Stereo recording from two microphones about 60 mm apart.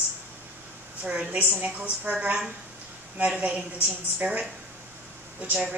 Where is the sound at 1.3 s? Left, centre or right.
Right.